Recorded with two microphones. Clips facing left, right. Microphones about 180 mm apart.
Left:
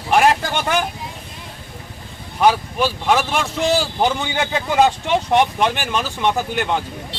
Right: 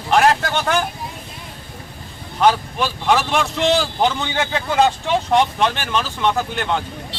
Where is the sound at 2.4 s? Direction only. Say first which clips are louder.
Left 1 dB; 5° left (ahead or behind).